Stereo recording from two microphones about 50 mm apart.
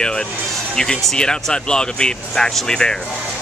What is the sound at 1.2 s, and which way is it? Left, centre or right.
Speech, centre.